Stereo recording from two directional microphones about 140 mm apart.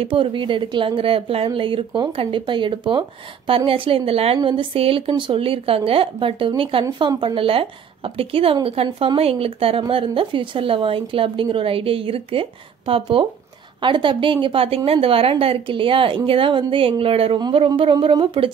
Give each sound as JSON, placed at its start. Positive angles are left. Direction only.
{"t": 0.0, "sound": "speech", "side_deg": -40}